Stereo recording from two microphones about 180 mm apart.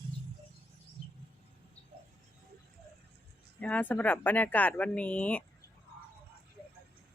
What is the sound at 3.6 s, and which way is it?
Speech, 10° left (ahead or behind).